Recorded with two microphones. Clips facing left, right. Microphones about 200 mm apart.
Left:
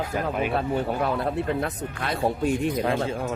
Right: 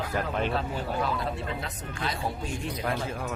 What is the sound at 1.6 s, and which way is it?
Speech, 60° left (ahead or behind).